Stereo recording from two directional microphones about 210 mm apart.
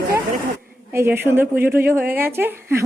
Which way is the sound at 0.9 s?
10° right (ahead or behind).